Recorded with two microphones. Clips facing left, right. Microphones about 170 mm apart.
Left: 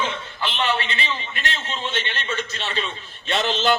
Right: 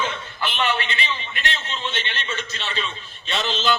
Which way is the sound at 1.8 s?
45° left (ahead or behind).